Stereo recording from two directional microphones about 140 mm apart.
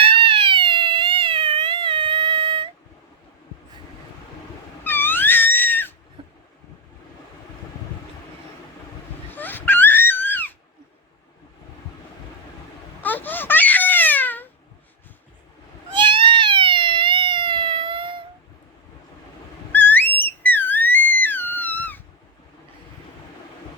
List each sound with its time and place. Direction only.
0.0 s cat: 40° right (ahead or behind)
4.8 s wail: 15° left (ahead or behind)
6.2 s vehicle: 40° right (ahead or behind)
9.3 s a sound: 15° left (ahead or behind)
13.0 s wail: 15° left (ahead or behind)
15.9 s cat: 35° right (ahead or behind)
19.7 s whistle: 15° left (ahead or behind)